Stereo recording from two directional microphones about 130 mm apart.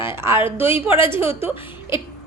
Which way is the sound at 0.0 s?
20° right (ahead or behind).